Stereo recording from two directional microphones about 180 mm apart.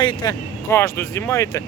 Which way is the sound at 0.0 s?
25° left (ahead or behind).